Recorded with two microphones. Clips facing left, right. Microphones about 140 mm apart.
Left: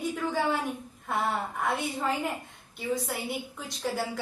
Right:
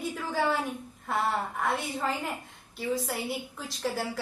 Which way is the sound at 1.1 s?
Centre (ahead or behind).